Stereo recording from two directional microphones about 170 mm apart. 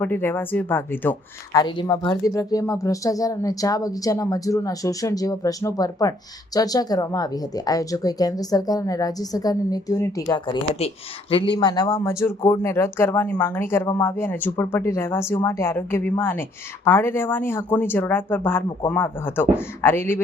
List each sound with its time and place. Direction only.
0.0 s speech: 15° left (ahead or behind)
1.5 s speech: 25° left (ahead or behind)